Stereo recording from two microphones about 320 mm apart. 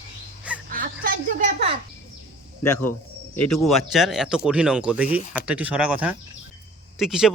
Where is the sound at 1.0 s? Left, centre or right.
Right.